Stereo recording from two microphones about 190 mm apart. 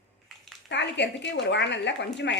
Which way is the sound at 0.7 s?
65° left (ahead or behind).